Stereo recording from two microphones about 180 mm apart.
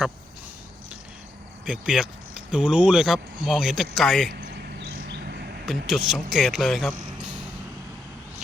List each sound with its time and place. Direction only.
1.6 s speech: 5° right (ahead or behind)
4.3 s a sound: 60° right (ahead or behind)
5.6 s speech: centre (ahead or behind)